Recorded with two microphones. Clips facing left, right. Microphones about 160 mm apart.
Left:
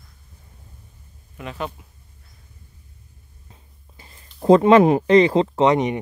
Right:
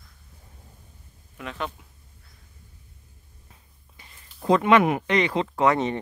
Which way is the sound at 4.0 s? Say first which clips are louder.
Left 7 dB; 35° left (ahead or behind).